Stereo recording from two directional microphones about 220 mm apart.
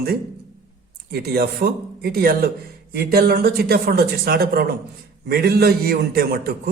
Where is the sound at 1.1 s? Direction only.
45° right (ahead or behind).